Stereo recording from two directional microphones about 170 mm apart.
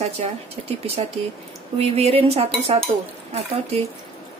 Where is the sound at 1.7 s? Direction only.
40° right (ahead or behind).